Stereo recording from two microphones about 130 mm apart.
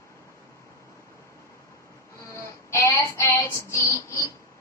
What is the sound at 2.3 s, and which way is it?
Child singing, 20° left (ahead or behind).